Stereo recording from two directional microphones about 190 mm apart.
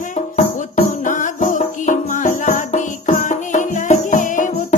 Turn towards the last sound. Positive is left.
turn(degrees=45)  # may be behind; listen again after turning